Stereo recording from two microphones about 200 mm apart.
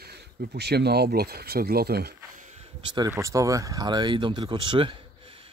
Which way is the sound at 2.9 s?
15° right (ahead or behind).